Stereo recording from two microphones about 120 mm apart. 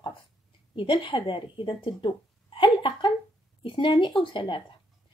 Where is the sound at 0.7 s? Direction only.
45° left (ahead or behind).